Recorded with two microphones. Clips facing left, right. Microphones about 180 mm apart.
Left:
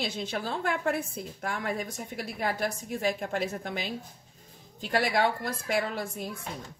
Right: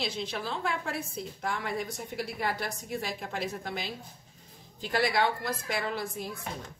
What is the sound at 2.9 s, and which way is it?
Speech, 50° left (ahead or behind).